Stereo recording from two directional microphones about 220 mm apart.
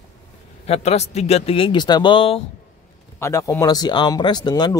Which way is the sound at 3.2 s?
10° left (ahead or behind).